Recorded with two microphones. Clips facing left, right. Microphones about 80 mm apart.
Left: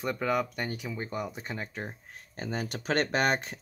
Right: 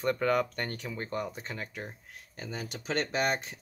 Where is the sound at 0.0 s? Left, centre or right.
Centre.